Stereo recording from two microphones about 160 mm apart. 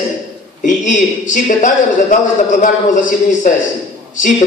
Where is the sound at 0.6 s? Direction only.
50° left (ahead or behind).